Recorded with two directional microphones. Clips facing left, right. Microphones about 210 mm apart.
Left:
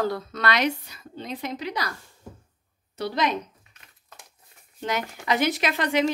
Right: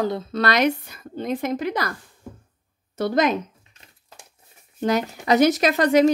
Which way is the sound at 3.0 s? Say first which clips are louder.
Right 6 dB; 45° right (ahead or behind).